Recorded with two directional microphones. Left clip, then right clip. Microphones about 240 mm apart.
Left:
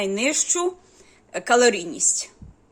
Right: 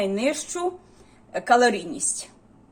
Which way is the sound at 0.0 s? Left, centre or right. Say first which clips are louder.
Left 1 dB; left.